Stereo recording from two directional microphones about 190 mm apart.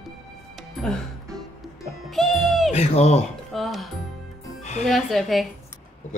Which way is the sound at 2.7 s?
35° left (ahead or behind).